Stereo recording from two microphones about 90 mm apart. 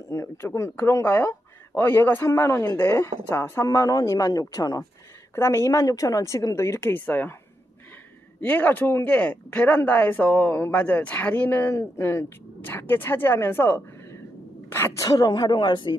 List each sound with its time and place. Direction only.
0.1 s a woman's voice: 30° left (ahead or behind)
5.3 s a woman's voice: 30° left (ahead or behind)
7.1 s speech: 20° left (ahead or behind)
8.4 s speech: 20° left (ahead or behind)
15.0 s a woman's voice: 45° left (ahead or behind)